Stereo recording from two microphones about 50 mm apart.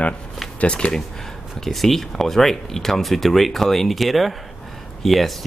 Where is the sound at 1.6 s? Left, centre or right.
Centre.